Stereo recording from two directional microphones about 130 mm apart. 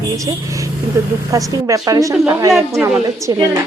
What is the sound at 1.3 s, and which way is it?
A woman's voice, 25° right (ahead or behind).